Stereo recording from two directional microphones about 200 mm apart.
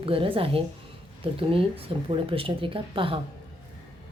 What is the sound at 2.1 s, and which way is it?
A woman's voice, 25° right (ahead or behind).